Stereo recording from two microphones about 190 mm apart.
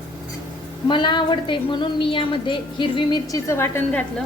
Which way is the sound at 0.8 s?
25° left (ahead or behind).